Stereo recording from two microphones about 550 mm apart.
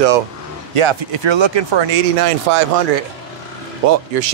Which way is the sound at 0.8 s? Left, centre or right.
Right.